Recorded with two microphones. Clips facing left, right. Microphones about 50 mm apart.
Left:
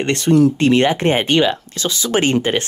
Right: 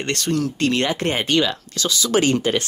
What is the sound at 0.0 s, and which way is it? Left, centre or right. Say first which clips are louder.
Speech: left 9 dB; left.